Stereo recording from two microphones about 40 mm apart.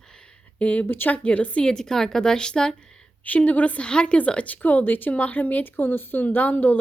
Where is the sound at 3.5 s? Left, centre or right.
Left.